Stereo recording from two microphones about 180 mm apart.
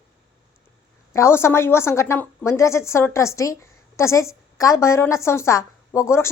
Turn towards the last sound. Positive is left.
turn(degrees=15)  # may be behind; listen again after turning